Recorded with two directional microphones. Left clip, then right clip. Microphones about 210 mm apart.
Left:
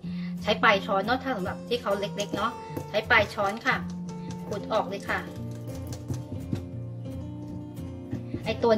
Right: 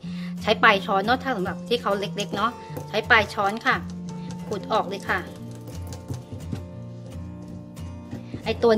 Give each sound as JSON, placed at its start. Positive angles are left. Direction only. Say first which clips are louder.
{"t": 0.1, "sound": "speech", "louder": "right 4 dB", "side_deg": -50}
{"t": 8.5, "sound": "speech", "louder": "right 4 dB", "side_deg": -50}